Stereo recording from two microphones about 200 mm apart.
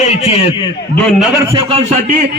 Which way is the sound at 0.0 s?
30° left (ahead or behind).